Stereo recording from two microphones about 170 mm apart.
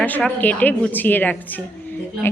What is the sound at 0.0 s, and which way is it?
A woman's voice, 10° left (ahead or behind).